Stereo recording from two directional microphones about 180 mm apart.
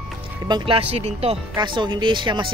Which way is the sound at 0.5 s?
25° right (ahead or behind).